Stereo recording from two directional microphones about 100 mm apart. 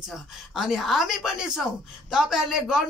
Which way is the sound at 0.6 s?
Centre (ahead or behind).